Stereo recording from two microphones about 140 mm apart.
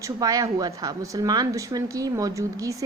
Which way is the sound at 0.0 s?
25° right (ahead or behind).